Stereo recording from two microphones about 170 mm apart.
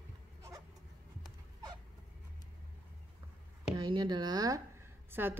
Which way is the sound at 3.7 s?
25° right (ahead or behind).